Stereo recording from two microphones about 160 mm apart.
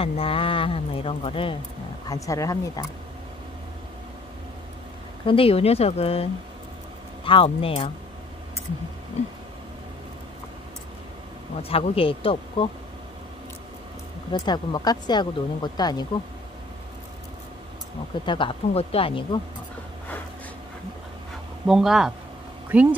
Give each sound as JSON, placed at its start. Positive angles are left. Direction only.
{"t": 0.0, "sound": "speech", "side_deg": 35}
{"t": 2.0, "sound": "speech", "side_deg": 20}
{"t": 5.2, "sound": "speech", "side_deg": 35}
{"t": 7.2, "sound": "speech", "side_deg": 35}
{"t": 11.7, "sound": "speech", "side_deg": 35}
{"t": 14.3, "sound": "speech", "side_deg": 25}
{"t": 18.2, "sound": "speech", "side_deg": 30}
{"t": 21.6, "sound": "speech", "side_deg": -5}